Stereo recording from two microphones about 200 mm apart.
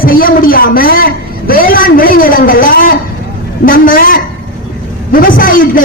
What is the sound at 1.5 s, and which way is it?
Vehicle, 45° left (ahead or behind).